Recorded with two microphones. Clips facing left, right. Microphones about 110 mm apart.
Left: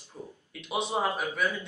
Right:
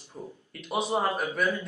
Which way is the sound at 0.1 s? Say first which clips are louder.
Right 2 dB; 10° right (ahead or behind).